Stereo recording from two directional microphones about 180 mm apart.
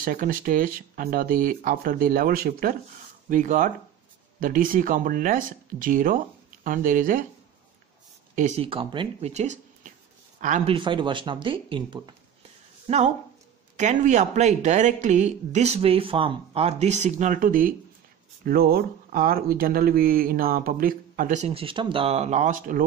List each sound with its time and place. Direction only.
0.0 s speech: 50° right (ahead or behind)
8.4 s speech: 35° right (ahead or behind)
10.7 s speech: 25° right (ahead or behind)
12.8 s speech: 40° right (ahead or behind)